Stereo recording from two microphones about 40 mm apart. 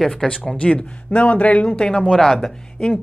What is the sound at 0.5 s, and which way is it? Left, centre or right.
Speech, left.